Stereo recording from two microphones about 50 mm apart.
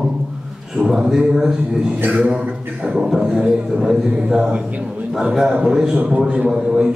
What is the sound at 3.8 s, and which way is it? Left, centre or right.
Speech, centre.